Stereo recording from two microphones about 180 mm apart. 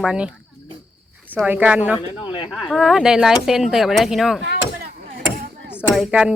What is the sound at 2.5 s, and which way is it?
Speech, centre (ahead or behind).